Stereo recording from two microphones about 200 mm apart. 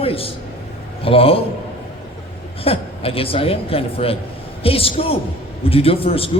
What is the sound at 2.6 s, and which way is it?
Speech, 30° left (ahead or behind).